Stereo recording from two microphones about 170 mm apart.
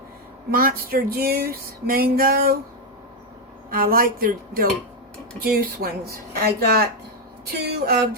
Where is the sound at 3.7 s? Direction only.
55° right (ahead or behind).